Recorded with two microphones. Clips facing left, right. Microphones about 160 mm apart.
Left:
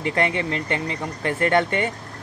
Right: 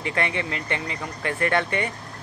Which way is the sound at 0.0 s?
30° left (ahead or behind).